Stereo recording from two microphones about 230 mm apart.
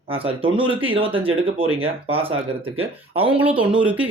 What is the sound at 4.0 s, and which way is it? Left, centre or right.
Speech, centre.